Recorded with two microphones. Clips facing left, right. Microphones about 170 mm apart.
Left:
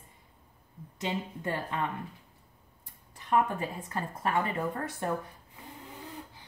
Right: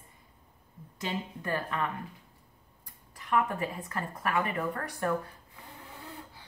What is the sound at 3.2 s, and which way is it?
Speech, 25° left (ahead or behind).